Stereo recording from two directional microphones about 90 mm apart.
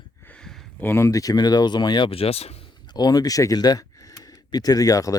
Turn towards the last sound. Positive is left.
turn(degrees=40)  # may be behind; listen again after turning